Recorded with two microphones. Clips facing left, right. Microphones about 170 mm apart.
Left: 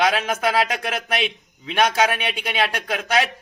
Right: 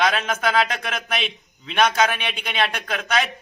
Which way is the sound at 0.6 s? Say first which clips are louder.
Left 2 dB; 5° left (ahead or behind).